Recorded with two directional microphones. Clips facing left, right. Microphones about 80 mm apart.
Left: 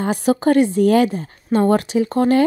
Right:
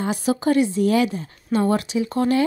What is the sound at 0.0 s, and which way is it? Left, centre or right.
Speech, left.